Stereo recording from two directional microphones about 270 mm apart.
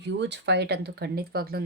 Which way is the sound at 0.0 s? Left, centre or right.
Right.